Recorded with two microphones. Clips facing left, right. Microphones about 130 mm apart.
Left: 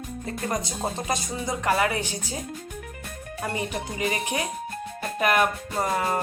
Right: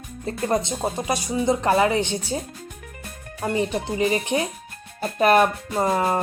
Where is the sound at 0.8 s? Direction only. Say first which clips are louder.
Right 3 dB; 15° right (ahead or behind).